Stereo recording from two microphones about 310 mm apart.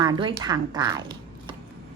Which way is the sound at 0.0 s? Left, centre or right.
Centre.